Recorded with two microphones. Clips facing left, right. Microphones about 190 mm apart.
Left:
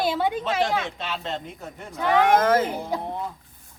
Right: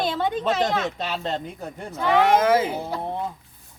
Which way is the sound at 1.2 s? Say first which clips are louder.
Right 4 dB; 35° right (ahead or behind).